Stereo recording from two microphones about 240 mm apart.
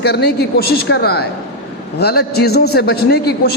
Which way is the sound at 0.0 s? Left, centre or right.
Left.